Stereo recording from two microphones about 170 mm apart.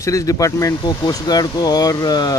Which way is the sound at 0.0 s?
20° left (ahead or behind).